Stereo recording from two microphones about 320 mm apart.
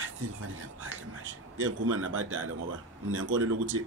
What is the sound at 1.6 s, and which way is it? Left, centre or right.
A man's voice, right.